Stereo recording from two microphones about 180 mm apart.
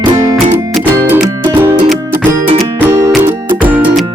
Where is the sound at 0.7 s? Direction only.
10° right (ahead or behind).